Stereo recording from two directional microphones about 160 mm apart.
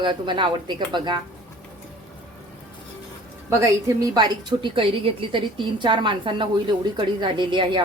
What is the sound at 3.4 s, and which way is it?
A woman's voice, 20° right (ahead or behind).